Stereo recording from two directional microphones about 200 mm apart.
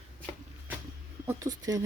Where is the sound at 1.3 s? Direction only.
15° right (ahead or behind).